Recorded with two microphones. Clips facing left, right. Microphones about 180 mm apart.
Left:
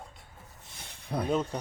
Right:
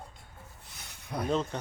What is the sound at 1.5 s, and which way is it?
Speech, 10° left (ahead or behind).